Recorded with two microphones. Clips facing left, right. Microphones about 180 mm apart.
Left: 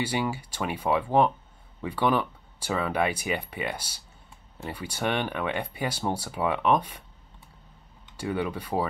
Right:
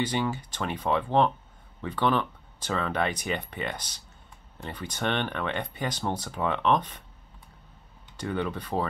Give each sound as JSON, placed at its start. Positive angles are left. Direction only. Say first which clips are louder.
{"t": 0.0, "sound": "speech", "louder": "even", "side_deg": 10}
{"t": 8.2, "sound": "speech", "louder": "left 1 dB", "side_deg": 10}